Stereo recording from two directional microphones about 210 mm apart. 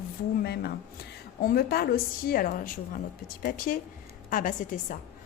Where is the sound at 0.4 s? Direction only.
50° left (ahead or behind).